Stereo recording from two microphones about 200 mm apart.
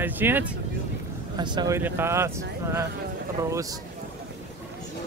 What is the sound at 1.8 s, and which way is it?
Speech, 10° right (ahead or behind).